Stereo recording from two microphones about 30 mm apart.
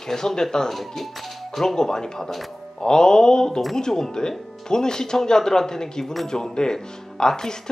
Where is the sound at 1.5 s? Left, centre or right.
Centre.